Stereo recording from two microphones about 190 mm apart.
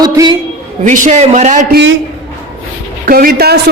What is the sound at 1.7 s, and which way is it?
Speech, 80° right.